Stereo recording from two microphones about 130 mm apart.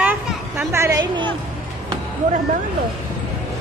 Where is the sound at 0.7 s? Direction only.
20° right (ahead or behind).